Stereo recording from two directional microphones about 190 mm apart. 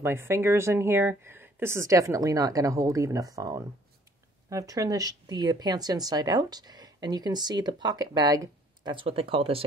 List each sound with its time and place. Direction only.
0.0 s speech: 15° right (ahead or behind); by 9.6 s 30° right (ahead or behind)